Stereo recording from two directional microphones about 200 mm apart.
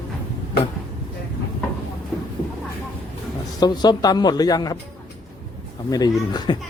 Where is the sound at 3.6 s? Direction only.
20° left (ahead or behind).